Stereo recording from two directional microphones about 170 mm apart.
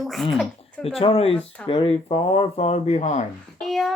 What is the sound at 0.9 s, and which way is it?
Speech, 35° left (ahead or behind).